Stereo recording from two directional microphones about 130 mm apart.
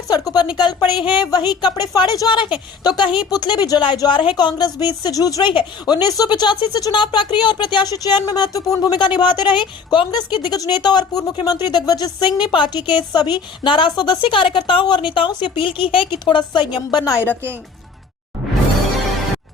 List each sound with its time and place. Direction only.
0.1 s a woman's voice: 30° left (ahead or behind)